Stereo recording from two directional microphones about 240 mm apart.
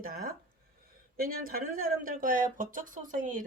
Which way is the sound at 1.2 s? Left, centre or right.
Right.